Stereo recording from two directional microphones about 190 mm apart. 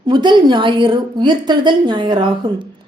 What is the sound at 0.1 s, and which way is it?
A woman's voice, 25° right (ahead or behind).